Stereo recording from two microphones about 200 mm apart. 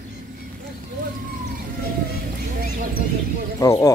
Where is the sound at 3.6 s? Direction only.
15° left (ahead or behind).